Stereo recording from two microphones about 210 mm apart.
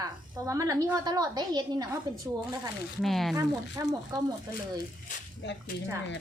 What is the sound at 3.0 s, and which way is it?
Speech, centre (ahead or behind).